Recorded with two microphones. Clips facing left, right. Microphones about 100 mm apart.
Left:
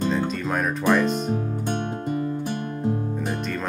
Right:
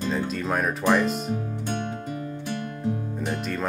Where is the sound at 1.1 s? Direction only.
35° left (ahead or behind).